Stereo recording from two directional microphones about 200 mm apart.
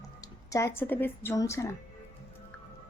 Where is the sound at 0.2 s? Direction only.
15° left (ahead or behind).